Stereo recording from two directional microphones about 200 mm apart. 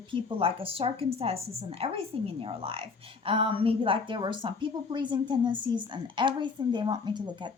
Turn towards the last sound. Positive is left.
turn(degrees=-20)  # may be behind; listen again after turning